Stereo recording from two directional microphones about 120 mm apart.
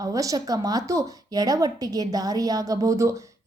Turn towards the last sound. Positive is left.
turn(degrees=-25)  # may be behind; listen again after turning